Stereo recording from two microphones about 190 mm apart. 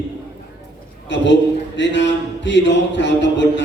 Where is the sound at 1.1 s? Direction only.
70° left (ahead or behind).